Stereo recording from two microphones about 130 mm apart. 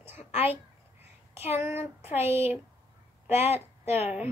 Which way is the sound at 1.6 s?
15° right (ahead or behind).